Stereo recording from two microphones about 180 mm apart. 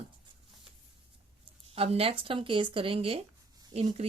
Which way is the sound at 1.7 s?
30° right (ahead or behind).